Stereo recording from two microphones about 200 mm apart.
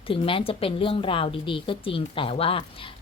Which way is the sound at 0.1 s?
25° left (ahead or behind).